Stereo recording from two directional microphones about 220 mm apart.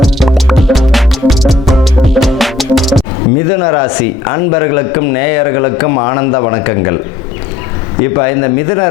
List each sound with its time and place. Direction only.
0.0 s music: centre (ahead or behind)
3.6 s a man's voice: 20° left (ahead or behind)
8.1 s a man's voice: 20° left (ahead or behind)